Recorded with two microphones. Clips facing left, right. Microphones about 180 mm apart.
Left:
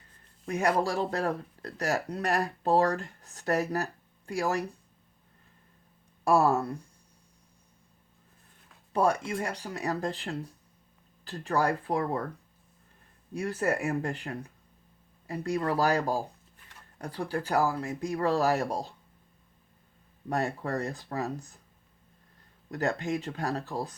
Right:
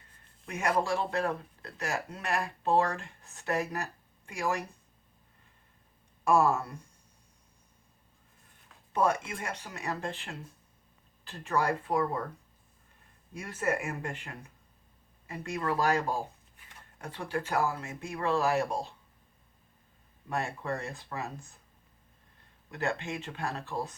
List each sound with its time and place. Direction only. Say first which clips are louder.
0.4 s speech: left 3 dB; 35° left (ahead or behind)
6.2 s speech: left 2 dB; 35° left (ahead or behind)
8.9 s speech: left 2 dB; 35° left (ahead or behind)
13.3 s speech: left 3 dB; 35° left (ahead or behind)
15.3 s speech: left 4 dB; 35° left (ahead or behind)
20.3 s speech: left 4 dB; 40° left (ahead or behind)
22.7 s speech: left 4 dB; 40° left (ahead or behind)